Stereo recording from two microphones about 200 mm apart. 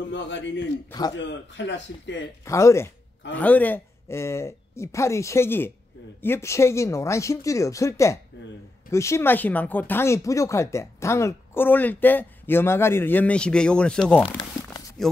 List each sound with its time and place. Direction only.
0.1 s speech: 65° left (ahead or behind)
0.8 s a man's voice: 20° left (ahead or behind)
1.6 s speech: 65° left (ahead or behind)
2.4 s speech: 15° left (ahead or behind)